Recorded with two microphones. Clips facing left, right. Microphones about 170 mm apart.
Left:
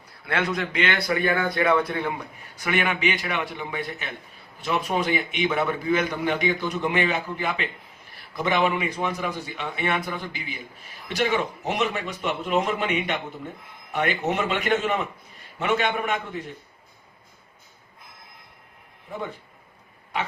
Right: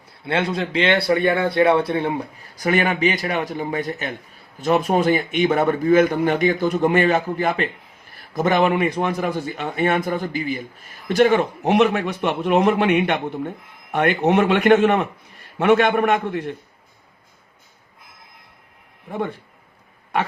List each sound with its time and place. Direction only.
0.3 s a man's voice: 30° right (ahead or behind); by 16.6 s 65° right (ahead or behind)